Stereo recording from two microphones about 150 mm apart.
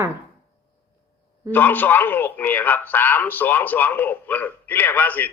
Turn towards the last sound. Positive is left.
turn(degrees=10)  # may be behind; listen again after turning